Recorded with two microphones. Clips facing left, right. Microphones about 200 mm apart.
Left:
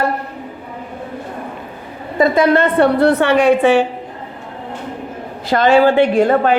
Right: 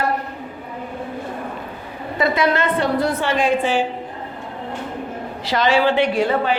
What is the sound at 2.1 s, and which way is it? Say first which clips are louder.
A man's voice: left 6 dB; 50° left (ahead or behind).